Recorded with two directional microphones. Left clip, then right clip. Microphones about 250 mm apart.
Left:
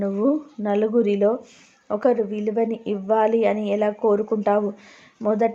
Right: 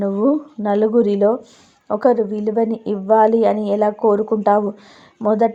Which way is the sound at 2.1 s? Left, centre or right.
Centre.